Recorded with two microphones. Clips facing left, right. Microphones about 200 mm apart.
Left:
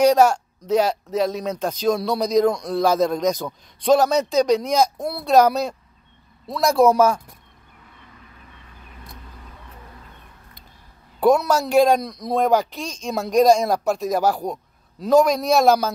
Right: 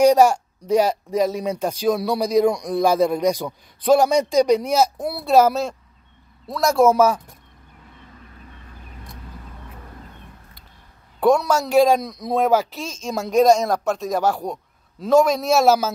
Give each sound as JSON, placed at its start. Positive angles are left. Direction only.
{"t": 0.0, "sound": "speech", "side_deg": -10}
{"t": 11.1, "sound": "speech", "side_deg": 5}